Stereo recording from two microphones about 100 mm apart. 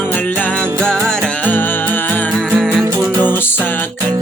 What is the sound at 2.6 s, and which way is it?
Music, 5° left (ahead or behind).